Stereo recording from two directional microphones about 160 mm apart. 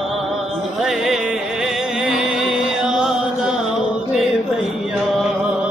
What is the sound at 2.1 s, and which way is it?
Music, 5° right (ahead or behind).